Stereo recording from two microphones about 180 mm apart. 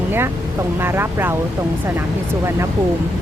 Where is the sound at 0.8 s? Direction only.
15° right (ahead or behind).